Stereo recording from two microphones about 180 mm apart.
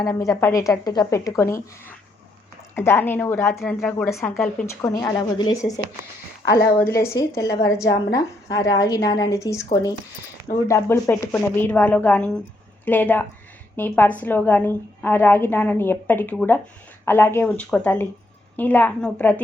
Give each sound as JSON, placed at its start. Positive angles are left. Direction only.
{"t": 0.0, "sound": "a woman's voice", "side_deg": 20}
{"t": 10.7, "sound": "a woman's voice", "side_deg": 15}